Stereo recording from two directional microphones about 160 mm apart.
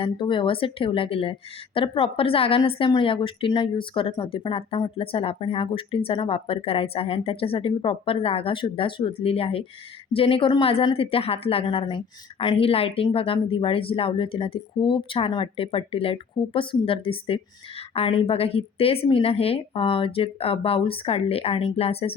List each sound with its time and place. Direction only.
0.0 s a woman's voice: 30° left (ahead or behind)